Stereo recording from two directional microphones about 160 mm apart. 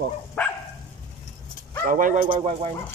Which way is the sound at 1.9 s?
55° right (ahead or behind).